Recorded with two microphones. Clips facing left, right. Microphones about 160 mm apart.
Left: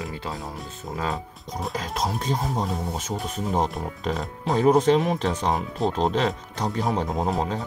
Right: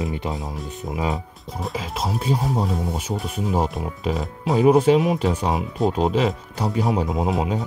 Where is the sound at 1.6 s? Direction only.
5° right (ahead or behind).